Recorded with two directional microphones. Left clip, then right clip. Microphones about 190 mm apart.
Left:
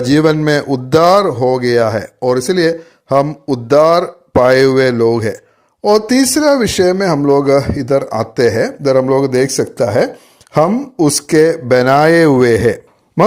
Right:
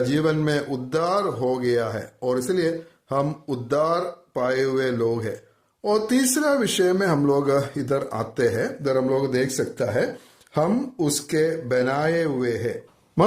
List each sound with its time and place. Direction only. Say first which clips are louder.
0.1 s speech: left 11 dB; 40° left (ahead or behind)